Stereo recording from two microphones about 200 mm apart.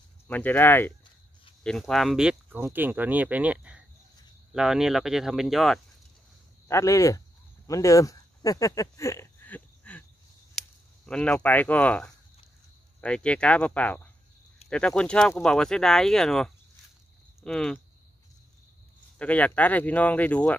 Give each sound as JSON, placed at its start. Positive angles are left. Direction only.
{"t": 0.3, "sound": "speech", "side_deg": 10}
{"t": 6.7, "sound": "speech", "side_deg": 15}
{"t": 11.1, "sound": "speech", "side_deg": 5}
{"t": 19.1, "sound": "speech", "side_deg": 5}